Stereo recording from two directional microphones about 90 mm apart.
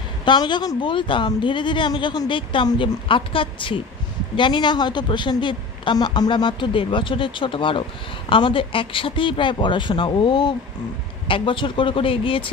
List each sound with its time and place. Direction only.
0.2 s a woman's voice: 60° left (ahead or behind)
4.4 s speech: 60° left (ahead or behind)
11.2 s speech: 70° left (ahead or behind)